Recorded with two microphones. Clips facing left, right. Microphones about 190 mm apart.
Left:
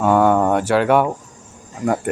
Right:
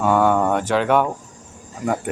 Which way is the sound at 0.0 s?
5° left (ahead or behind).